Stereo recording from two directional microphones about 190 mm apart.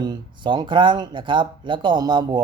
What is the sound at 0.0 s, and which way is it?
Speech, 20° right (ahead or behind).